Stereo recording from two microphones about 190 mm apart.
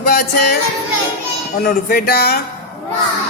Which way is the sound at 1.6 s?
50° left (ahead or behind).